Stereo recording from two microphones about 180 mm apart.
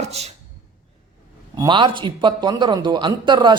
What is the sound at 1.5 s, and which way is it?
A man's voice, 25° right (ahead or behind).